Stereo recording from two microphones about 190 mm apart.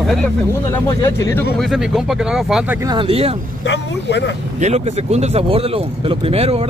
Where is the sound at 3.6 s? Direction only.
65° left (ahead or behind).